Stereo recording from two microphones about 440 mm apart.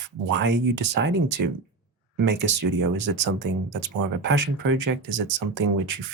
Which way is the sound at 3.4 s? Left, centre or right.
Right.